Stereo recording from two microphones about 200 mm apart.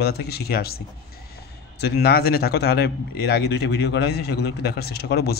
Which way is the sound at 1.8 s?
55° left (ahead or behind).